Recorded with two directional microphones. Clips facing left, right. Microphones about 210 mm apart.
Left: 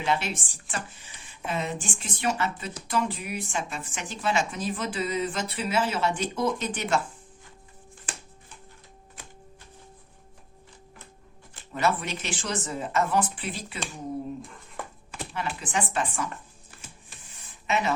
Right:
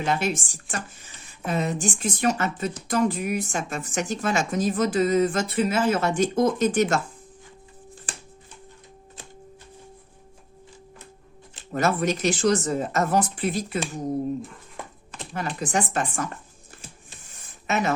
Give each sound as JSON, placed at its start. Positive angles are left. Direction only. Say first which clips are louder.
{"t": 0.0, "sound": "speech", "louder": "right 3 dB", "side_deg": -45}
{"t": 11.7, "sound": "speech", "louder": "right 4 dB", "side_deg": -45}
{"t": 15.3, "sound": "speech", "louder": "right 5 dB", "side_deg": -40}
{"t": 17.7, "sound": "a woman's voice", "louder": "right 2 dB", "side_deg": -45}